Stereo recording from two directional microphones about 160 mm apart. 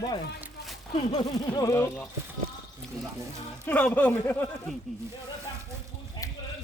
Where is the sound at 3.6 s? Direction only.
10° left (ahead or behind).